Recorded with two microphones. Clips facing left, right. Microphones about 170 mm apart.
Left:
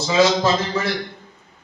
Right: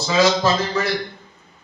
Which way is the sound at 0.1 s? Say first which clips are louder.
Even; 25° left (ahead or behind).